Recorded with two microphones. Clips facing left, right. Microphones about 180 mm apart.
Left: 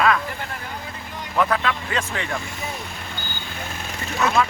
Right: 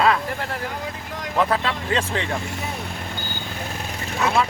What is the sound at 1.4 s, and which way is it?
Speech, 25° right (ahead or behind).